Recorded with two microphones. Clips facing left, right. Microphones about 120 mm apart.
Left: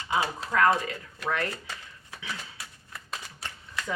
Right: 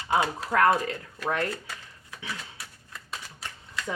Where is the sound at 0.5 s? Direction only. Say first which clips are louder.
Right 1 dB; 45° right (ahead or behind).